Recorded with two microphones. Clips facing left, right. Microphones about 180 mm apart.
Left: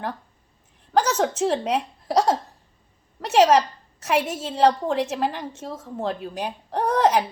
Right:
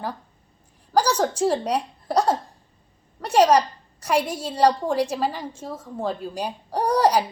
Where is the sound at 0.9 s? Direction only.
5° left (ahead or behind).